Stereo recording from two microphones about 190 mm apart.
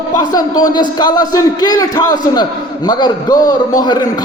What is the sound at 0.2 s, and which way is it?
A man's voice, 20° left (ahead or behind).